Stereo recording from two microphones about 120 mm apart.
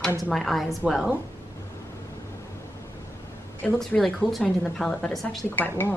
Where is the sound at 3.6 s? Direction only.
10° left (ahead or behind).